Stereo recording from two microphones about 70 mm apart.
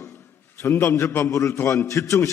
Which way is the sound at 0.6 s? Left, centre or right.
Left.